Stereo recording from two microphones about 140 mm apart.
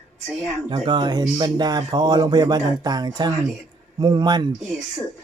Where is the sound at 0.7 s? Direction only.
30° right (ahead or behind).